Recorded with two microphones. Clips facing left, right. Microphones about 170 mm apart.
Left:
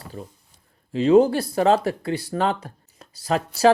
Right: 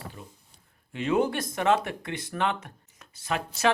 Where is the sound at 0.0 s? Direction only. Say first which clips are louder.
Left 6 dB; 40° left (ahead or behind).